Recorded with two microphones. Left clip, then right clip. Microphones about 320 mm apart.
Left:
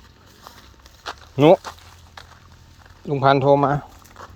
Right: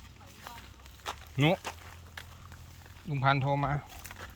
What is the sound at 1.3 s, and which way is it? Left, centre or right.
Speech, centre.